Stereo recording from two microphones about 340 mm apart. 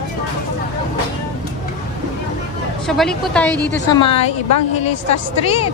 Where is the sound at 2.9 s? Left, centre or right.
Centre.